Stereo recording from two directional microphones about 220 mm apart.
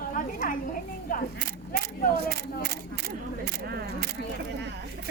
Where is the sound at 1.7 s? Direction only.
40° left (ahead or behind).